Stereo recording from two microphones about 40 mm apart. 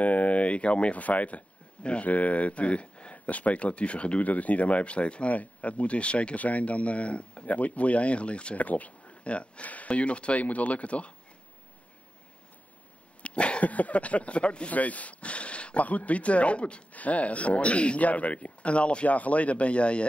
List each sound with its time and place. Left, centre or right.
0.0 s speech: left
13.2 s speech: left
14.7 s speech: left